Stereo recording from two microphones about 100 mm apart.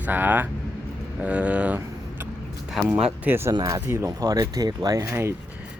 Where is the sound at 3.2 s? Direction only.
25° right (ahead or behind).